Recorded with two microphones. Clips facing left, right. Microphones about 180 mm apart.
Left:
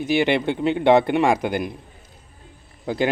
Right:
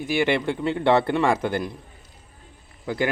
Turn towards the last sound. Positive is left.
turn(degrees=20)  # may be behind; listen again after turning